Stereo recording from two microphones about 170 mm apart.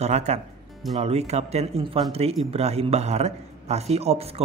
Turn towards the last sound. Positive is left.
turn(degrees=-35)  # may be behind; listen again after turning